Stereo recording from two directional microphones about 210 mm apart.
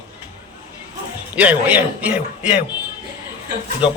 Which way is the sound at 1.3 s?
5° right (ahead or behind).